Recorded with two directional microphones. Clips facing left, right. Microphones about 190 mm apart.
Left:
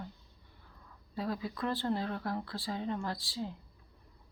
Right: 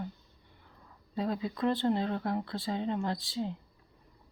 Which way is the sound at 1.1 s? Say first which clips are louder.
Right 4 dB; 20° right (ahead or behind).